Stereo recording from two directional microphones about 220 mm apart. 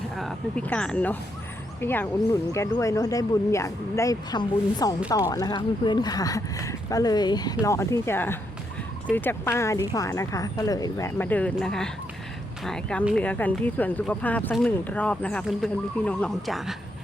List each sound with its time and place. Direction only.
0.2 s speech: 5° left (ahead or behind)